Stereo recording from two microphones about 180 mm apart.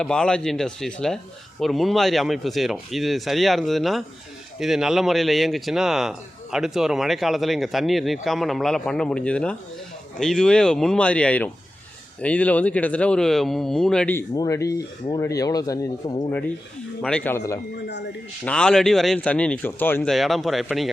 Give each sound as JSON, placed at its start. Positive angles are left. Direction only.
{"t": 0.0, "sound": "speech", "side_deg": 5}
{"t": 17.0, "sound": "speech", "side_deg": 5}
{"t": 17.8, "sound": "speech", "side_deg": 70}
{"t": 18.4, "sound": "speech", "side_deg": 5}
{"t": 20.1, "sound": "speech", "side_deg": 0}